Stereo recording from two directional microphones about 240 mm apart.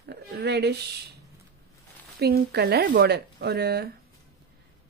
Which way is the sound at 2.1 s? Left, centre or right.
Right.